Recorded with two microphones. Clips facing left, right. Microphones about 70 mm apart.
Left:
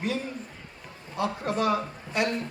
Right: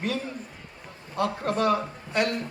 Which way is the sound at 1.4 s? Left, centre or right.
Right.